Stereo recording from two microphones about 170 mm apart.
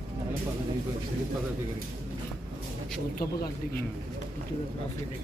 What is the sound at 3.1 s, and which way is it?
Speech, 60° left (ahead or behind).